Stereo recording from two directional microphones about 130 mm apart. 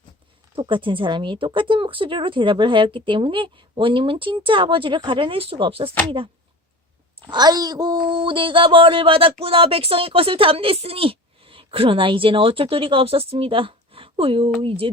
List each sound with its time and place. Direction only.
0.6 s a woman's voice: 40° right (ahead or behind)